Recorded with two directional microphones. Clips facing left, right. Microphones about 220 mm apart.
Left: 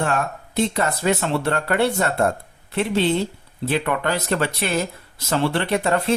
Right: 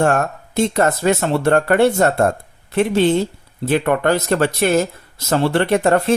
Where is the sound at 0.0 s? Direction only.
50° right (ahead or behind).